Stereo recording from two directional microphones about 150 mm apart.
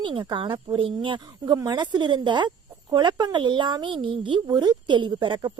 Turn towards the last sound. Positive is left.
turn(degrees=-30)  # may be behind; listen again after turning